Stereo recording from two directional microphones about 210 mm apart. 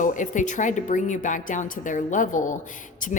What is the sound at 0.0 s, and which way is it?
Speech, 40° left (ahead or behind).